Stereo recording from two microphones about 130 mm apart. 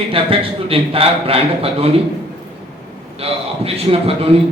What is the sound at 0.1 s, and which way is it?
A man's voice, 45° right (ahead or behind).